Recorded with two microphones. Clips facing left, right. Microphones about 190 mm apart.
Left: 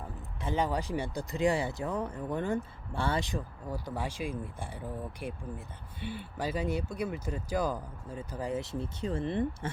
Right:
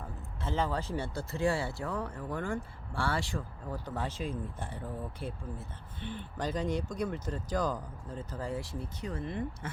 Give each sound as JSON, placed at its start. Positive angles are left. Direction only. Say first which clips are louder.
{"t": 0.4, "sound": "speech", "louder": "left 2 dB", "side_deg": 15}